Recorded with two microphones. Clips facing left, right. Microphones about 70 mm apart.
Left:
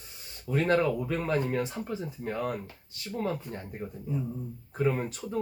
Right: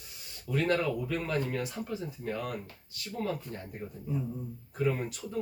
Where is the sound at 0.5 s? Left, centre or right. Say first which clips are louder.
Left 3 dB; left.